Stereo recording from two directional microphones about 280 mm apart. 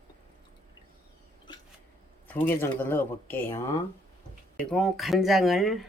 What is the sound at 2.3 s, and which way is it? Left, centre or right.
A woman's voice, centre.